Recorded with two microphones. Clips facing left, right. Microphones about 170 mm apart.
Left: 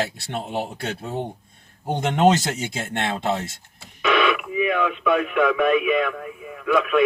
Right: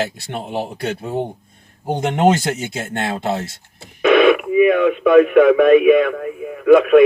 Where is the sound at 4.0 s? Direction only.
50° right (ahead or behind).